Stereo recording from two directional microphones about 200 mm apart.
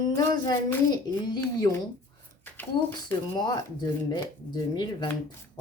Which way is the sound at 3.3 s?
20° left (ahead or behind).